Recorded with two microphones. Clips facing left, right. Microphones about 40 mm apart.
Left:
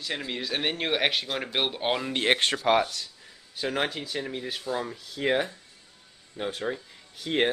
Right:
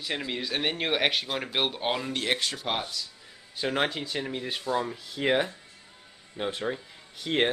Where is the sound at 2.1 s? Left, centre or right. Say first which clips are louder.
Left 4 dB; left.